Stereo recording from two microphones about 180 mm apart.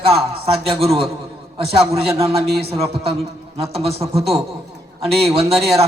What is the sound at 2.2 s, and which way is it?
A man's voice, 35° right (ahead or behind).